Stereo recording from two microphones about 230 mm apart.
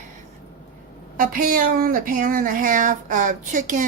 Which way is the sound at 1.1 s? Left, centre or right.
Right.